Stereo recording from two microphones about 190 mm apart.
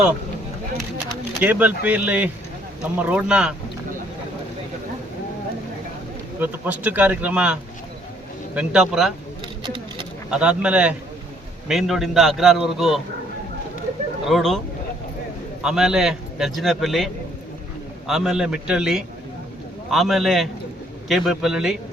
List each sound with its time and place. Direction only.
1.4 s a man's voice: 10° right (ahead or behind)
6.4 s a man's voice: 10° right (ahead or behind)
9.6 s speech: 25° right (ahead or behind)
10.2 s a man's voice: 5° right (ahead or behind)
14.3 s a man's voice: centre (ahead or behind)
15.6 s a man's voice: 5° right (ahead or behind)
18.1 s a man's voice: centre (ahead or behind)